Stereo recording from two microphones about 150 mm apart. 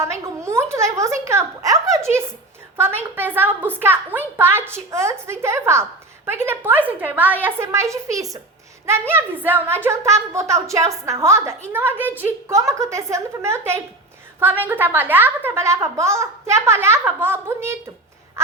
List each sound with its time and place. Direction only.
0.0 s a woman's voice: 20° right (ahead or behind)